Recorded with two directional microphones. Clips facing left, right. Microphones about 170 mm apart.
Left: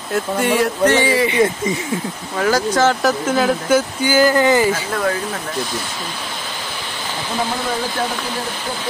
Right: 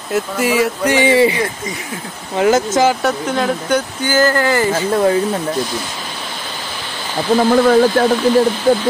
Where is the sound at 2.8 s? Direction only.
5° right (ahead or behind); by 4.7 s 15° left (ahead or behind).